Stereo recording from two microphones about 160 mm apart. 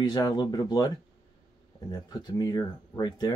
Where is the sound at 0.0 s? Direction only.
25° left (ahead or behind).